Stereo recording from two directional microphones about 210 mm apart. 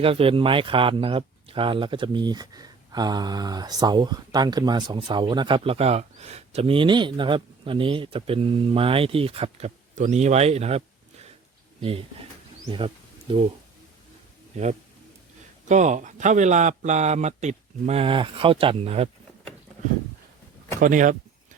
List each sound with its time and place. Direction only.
0.0 s speech: 25° right (ahead or behind)
12.6 s a sound: 25° right (ahead or behind)
15.6 s speech: 35° right (ahead or behind)
20.8 s speech: 40° right (ahead or behind)